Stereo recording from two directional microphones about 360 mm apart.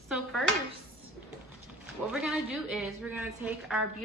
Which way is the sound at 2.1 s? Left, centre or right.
Centre.